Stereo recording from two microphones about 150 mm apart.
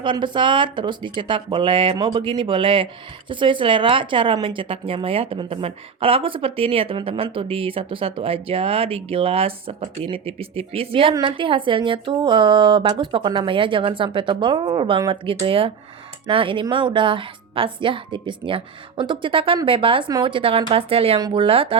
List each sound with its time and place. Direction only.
0.0 s speech: 30° right (ahead or behind)
21.2 s speech: 25° right (ahead or behind)
21.4 s speech: 40° right (ahead or behind)